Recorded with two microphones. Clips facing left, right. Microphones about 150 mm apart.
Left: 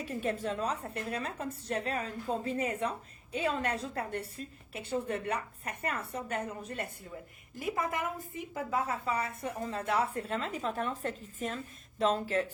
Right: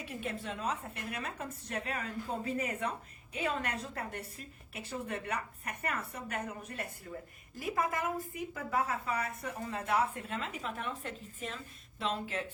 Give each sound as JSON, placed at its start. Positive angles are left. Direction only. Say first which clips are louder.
{"t": 0.1, "sound": "a woman's voice", "louder": "left 6 dB", "side_deg": 40}